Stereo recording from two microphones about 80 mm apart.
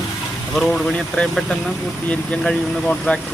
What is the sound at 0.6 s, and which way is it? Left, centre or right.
Speech, centre.